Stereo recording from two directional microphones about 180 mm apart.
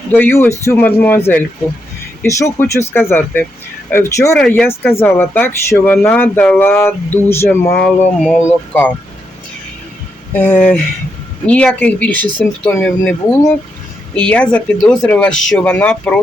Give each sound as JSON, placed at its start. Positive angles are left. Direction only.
{"t": 0.1, "sound": "speech", "side_deg": 10}
{"t": 10.3, "sound": "speech", "side_deg": 10}